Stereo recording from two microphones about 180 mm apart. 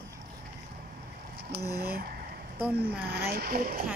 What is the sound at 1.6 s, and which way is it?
Speech, 60° right (ahead or behind).